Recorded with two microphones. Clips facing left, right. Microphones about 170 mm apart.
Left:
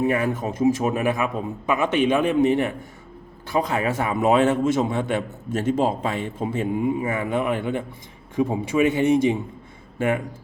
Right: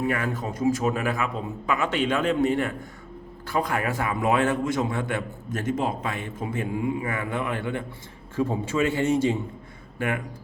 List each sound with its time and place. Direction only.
0.0 s a man's voice: 20° left (ahead or behind)